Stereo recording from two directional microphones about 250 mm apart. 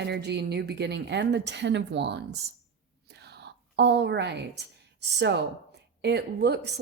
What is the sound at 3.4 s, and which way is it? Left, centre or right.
A woman's voice, right.